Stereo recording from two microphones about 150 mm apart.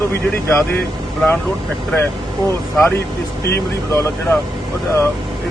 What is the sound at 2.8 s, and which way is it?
Speech, 15° left (ahead or behind).